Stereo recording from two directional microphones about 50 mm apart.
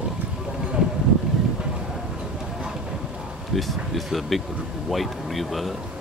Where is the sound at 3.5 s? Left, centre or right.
Centre.